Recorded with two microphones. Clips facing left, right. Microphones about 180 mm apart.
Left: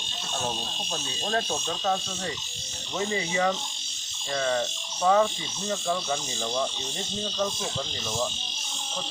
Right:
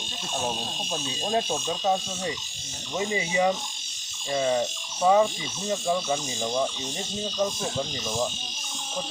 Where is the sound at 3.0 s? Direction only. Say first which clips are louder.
Right 2 dB; 15° right (ahead or behind).